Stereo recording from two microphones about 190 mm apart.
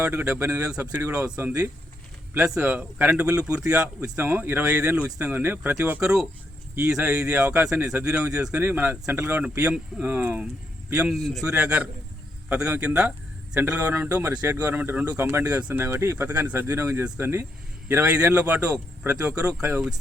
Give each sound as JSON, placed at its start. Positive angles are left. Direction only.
{"t": 0.0, "sound": "speech", "side_deg": -5}